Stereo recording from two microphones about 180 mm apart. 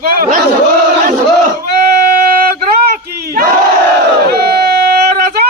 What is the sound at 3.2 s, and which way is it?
Battle cry, 60° right (ahead or behind).